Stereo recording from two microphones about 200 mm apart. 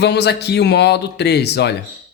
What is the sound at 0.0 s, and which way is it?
A man's voice, 55° left (ahead or behind).